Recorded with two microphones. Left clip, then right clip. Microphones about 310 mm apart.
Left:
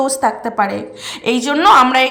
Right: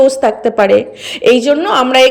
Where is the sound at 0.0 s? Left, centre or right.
Centre.